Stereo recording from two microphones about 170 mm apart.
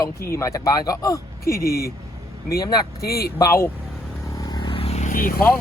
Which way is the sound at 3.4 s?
15° left (ahead or behind).